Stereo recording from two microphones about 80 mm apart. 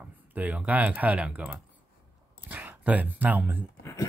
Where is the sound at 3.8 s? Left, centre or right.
Left.